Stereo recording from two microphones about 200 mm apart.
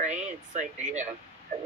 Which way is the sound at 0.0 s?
35° right (ahead or behind).